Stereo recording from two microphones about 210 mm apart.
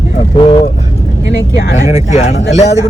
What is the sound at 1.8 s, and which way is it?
Speech, 35° left (ahead or behind).